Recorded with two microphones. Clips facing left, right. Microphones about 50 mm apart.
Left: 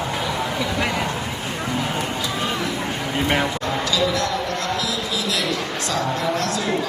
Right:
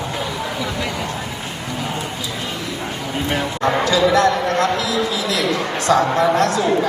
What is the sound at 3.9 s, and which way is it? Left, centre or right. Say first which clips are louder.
Speech: right 7 dB; right.